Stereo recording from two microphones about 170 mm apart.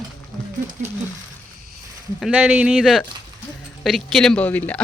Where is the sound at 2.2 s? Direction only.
5° right (ahead or behind).